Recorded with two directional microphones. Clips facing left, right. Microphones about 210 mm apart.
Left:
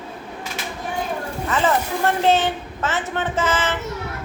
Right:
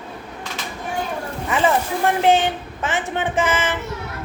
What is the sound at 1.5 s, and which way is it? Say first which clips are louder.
Speech: right 2 dB; 15° right (ahead or behind).